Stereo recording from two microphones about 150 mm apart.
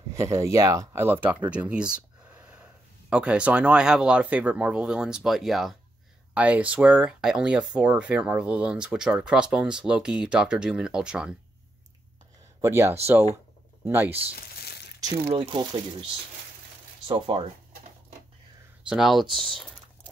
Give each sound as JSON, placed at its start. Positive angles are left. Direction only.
{"t": 0.1, "sound": "speech", "side_deg": -20}
{"t": 12.6, "sound": "speech", "side_deg": -20}
{"t": 14.3, "sound": "crumpling", "side_deg": 90}
{"t": 15.3, "sound": "speech", "side_deg": -30}
{"t": 17.1, "sound": "speech", "side_deg": -40}
{"t": 18.9, "sound": "speech", "side_deg": 0}